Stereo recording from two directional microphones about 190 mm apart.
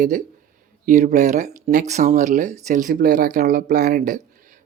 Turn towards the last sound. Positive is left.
turn(degrees=-45)  # may be behind; listen again after turning